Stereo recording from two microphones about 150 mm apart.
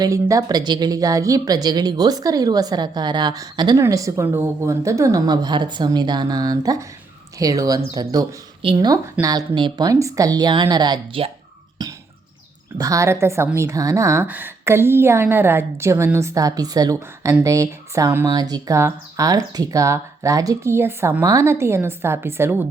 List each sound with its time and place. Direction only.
0.0 s speech: 20° right (ahead or behind)
11.8 s a sound: 25° right (ahead or behind)
12.7 s a woman's voice: 25° right (ahead or behind)